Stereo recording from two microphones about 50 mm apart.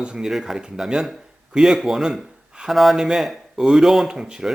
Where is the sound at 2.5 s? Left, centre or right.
Centre.